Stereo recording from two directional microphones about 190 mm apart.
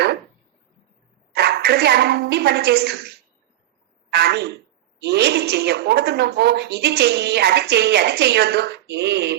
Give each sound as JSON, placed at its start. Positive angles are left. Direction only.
{"t": 1.3, "sound": "a woman's voice", "side_deg": -60}
{"t": 4.1, "sound": "a woman's voice", "side_deg": -60}